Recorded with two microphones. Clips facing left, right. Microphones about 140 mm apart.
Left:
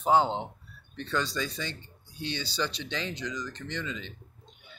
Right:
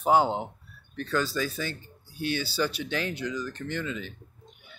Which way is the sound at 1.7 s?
20° left (ahead or behind).